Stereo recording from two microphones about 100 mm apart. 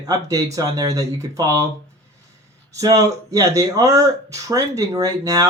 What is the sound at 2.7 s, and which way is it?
Speech, 35° right (ahead or behind).